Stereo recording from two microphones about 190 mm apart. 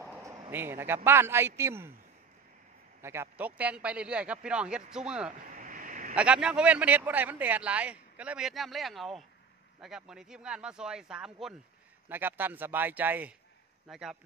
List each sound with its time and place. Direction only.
0.1 s a man's voice: 15° right (ahead or behind)
3.0 s a man's voice: 15° right (ahead or behind)
5.5 s a sound: 45° right (ahead or behind)
6.1 s a man's voice: 5° right (ahead or behind)